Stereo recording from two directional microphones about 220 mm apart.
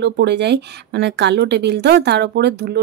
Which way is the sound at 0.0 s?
50° right (ahead or behind).